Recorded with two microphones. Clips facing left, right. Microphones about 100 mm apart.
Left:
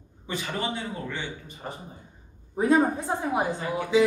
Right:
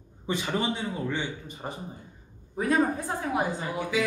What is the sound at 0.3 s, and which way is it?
A man's voice, 20° right (ahead or behind).